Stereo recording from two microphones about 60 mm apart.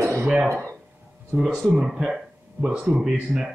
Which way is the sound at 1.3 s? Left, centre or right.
Centre.